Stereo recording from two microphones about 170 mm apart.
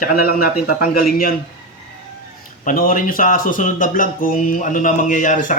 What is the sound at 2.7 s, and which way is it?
Speech, 55° left (ahead or behind).